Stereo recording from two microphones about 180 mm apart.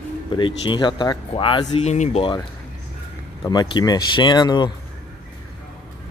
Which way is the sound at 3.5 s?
20° left (ahead or behind).